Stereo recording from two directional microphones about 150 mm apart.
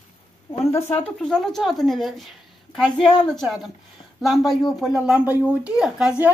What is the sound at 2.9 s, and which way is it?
Speech, 35° left (ahead or behind).